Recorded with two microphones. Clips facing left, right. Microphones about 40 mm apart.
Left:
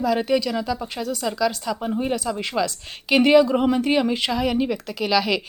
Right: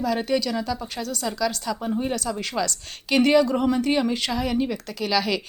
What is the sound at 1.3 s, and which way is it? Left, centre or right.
A woman's voice, centre.